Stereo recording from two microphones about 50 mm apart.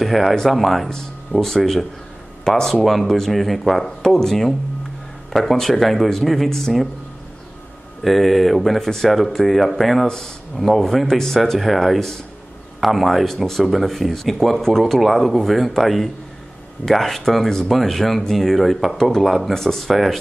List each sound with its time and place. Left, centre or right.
0.0 s speech: centre
8.0 s speech: centre